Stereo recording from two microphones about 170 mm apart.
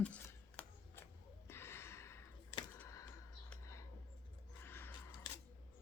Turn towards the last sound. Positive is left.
turn(degrees=10)  # may be behind; listen again after turning